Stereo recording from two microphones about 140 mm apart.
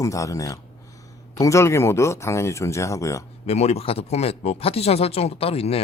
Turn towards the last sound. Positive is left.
turn(degrees=45)  # may be behind; listen again after turning